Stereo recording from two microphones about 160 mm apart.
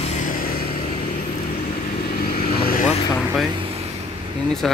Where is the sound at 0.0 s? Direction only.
50° left (ahead or behind).